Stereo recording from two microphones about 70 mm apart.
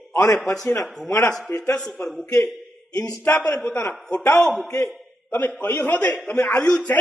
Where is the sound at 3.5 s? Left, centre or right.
Centre.